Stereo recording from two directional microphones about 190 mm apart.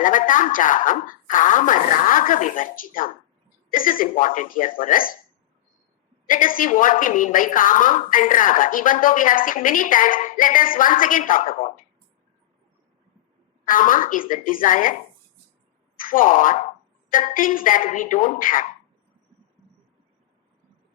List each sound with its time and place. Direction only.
0.0 s a woman's voice: 45° left (ahead or behind)
6.2 s a woman's voice: 45° left (ahead or behind)
13.7 s a woman's voice: 45° left (ahead or behind)
16.0 s a woman's voice: 45° left (ahead or behind)